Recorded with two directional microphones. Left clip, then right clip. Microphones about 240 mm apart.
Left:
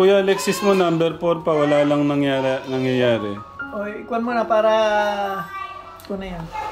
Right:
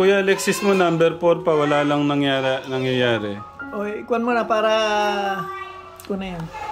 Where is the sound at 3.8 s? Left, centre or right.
Right.